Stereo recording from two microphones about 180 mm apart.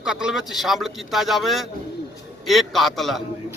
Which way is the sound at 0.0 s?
5° right (ahead or behind).